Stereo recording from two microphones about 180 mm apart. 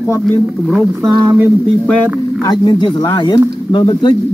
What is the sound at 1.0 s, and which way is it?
Speech, 25° right (ahead or behind).